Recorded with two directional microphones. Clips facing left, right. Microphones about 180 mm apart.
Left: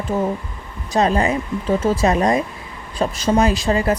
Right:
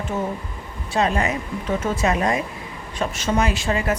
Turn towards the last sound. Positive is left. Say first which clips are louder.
# left 4 dB
turn(degrees=35)  # may be behind; listen again after turning